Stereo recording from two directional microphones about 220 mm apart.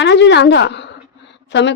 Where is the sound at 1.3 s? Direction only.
55° left (ahead or behind).